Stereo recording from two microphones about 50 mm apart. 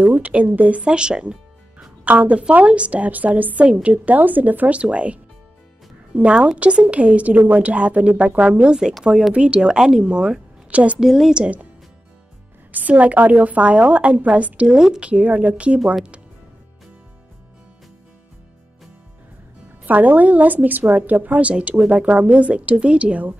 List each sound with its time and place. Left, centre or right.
0.0 s speech: right; by 1.9 s centre
2.0 s a woman's voice: right
11.0 s a woman's voice: centre
11.3 s a woman's voice: right
12.7 s a woman's voice: right
14.8 s a woman's voice: centre
15.0 s a woman's voice: right
19.9 s a woman's voice: right